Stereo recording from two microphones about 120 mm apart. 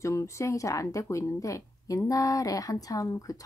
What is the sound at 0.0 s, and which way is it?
A woman's voice, 25° left (ahead or behind).